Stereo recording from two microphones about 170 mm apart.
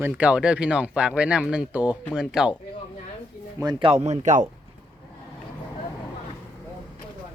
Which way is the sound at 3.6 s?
25° right (ahead or behind).